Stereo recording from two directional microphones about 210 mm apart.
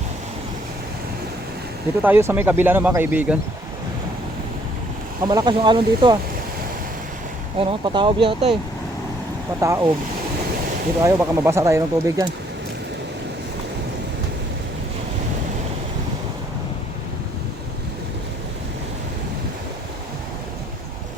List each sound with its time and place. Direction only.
2.0 s speech: 10° right (ahead or behind)
5.2 s speech: 20° right (ahead or behind)
7.6 s speech: 25° right (ahead or behind)
9.6 s speech: 15° right (ahead or behind)
11.0 s speech: 10° right (ahead or behind)